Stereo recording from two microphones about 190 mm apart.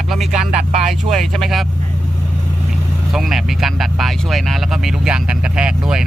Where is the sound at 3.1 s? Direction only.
Centre (ahead or behind).